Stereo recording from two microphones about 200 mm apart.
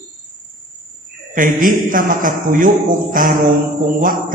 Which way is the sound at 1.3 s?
45° right (ahead or behind).